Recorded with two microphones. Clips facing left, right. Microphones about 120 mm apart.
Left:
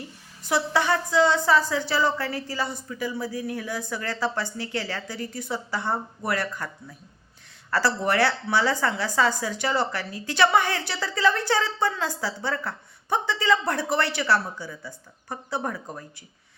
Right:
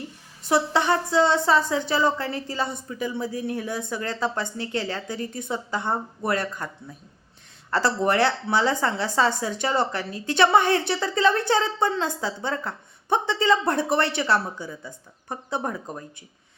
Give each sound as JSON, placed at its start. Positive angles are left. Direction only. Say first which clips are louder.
{"t": 0.4, "sound": "speech", "louder": "right 2 dB", "side_deg": -25}